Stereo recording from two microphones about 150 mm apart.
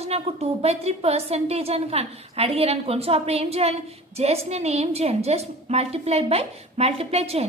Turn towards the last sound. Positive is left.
turn(degrees=-40)  # may be behind; listen again after turning